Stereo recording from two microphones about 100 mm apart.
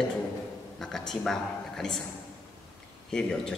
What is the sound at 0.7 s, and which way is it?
A man's voice, 5° left (ahead or behind).